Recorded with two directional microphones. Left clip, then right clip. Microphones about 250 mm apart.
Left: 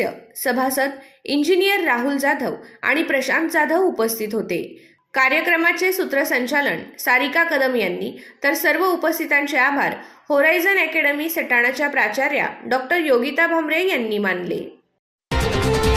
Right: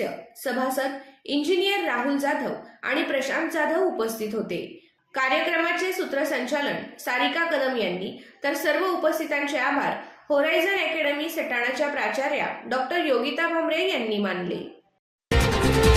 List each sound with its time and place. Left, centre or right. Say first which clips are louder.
0.0 s a woman's voice: left 7 dB; left
15.3 s music: left 2 dB; centre